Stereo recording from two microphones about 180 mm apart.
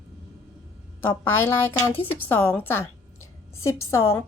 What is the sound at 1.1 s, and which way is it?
A woman's voice, 10° left (ahead or behind).